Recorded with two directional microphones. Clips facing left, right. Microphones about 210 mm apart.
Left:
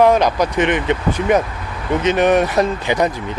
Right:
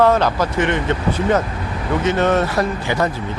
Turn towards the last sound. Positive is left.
turn(degrees=20)  # may be behind; listen again after turning